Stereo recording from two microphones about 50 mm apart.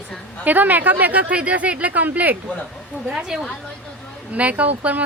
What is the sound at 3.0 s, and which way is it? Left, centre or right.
Speech, centre.